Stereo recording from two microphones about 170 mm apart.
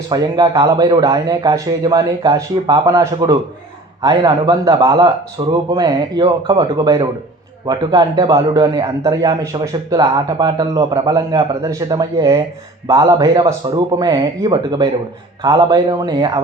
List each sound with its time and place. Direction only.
0.1 s a man's voice: 20° right (ahead or behind)